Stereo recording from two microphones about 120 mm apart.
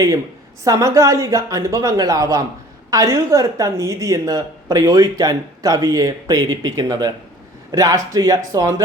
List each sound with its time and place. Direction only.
0.6 s speech: 25° right (ahead or behind)